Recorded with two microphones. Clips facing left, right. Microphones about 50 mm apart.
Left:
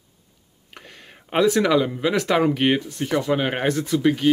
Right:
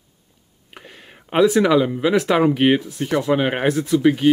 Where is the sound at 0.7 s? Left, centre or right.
Centre.